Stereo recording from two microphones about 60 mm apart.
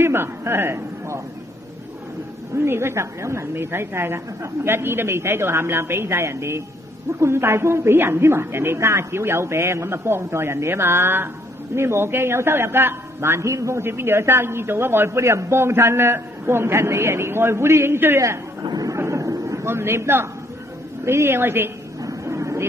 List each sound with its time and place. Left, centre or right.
0.0 s a man's voice: right
2.5 s a man's voice: right
18.6 s speech: right
18.9 s a sound: right
19.6 s a man's voice: right
22.0 s a sound: right